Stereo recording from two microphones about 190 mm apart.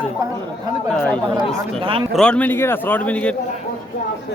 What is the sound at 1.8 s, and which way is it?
Speech, 30° right (ahead or behind).